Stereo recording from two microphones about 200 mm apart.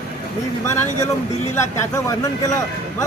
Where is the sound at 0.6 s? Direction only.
15° left (ahead or behind).